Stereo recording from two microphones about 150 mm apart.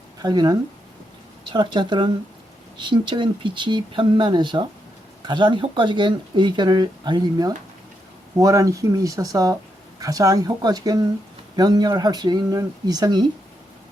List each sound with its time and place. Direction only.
0.2 s speech: 25° right (ahead or behind)